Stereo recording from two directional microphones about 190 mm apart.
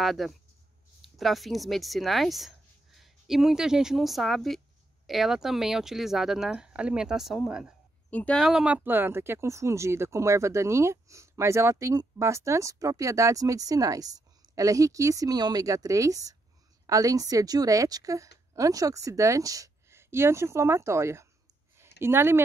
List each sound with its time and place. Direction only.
0.0 s speech: centre (ahead or behind)
8.1 s a woman's voice: 5° left (ahead or behind); by 22.4 s 10° right (ahead or behind)